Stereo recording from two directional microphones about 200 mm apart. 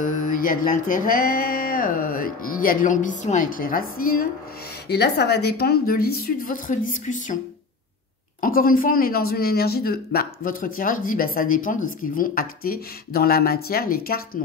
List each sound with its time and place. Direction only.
0.0 s speech: 40° left (ahead or behind)
8.4 s speech: 45° left (ahead or behind)